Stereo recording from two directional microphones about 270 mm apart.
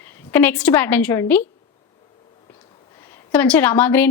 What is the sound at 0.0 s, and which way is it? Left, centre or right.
A woman's voice, centre.